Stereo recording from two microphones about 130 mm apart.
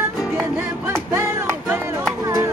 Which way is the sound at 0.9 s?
20° right (ahead or behind).